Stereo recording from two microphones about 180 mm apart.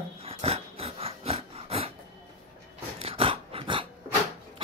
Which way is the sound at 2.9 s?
30° right (ahead or behind).